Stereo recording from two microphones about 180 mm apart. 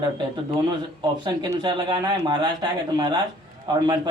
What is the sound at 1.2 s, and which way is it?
A man's voice, 25° right (ahead or behind).